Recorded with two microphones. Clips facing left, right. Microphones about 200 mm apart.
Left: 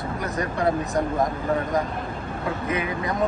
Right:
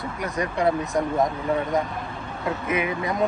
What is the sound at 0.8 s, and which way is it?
Speech, centre (ahead or behind).